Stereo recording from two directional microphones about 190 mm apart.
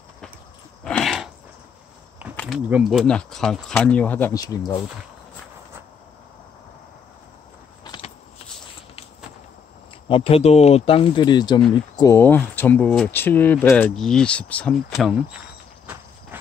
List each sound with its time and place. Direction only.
0.8 s dog: 5° left (ahead or behind)
2.3 s a sound: 5° left (ahead or behind)
2.7 s speech: centre (ahead or behind); by 4.7 s 20° left (ahead or behind)
7.8 s vehicle: 25° left (ahead or behind)
10.0 s speech: 30° left (ahead or behind); by 15.4 s 5° right (ahead or behind)